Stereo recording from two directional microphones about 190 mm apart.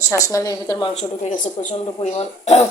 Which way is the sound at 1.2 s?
35° left (ahead or behind).